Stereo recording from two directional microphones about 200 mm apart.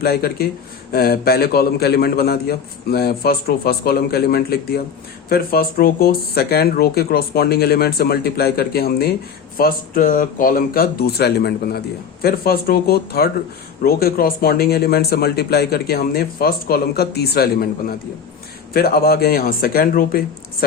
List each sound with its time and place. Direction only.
0.0 s speech: 50° left (ahead or behind)